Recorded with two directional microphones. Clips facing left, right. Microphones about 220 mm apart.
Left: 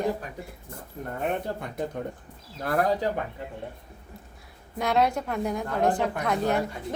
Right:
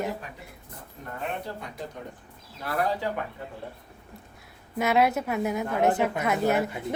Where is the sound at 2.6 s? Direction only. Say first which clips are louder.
Left 3 dB; 45° left (ahead or behind).